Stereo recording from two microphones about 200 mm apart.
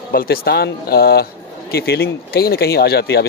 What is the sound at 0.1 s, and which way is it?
Speech, 50° left (ahead or behind).